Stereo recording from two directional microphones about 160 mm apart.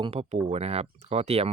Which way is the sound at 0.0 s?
40° right (ahead or behind).